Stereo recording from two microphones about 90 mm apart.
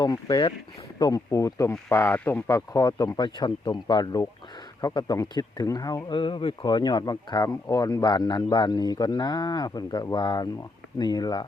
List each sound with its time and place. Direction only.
0.0 s speech: 50° left (ahead or behind)
1.9 s speech: 25° left (ahead or behind)
2.5 s speech: 40° left (ahead or behind)
6.1 s speech: 70° left (ahead or behind); by 11.4 s 50° left (ahead or behind)